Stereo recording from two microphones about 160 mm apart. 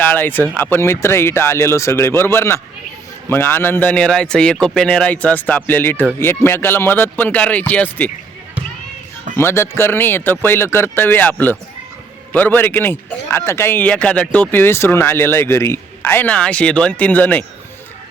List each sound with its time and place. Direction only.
0.1 s a man's voice: 10° left (ahead or behind)
9.3 s a man's voice: 15° left (ahead or behind)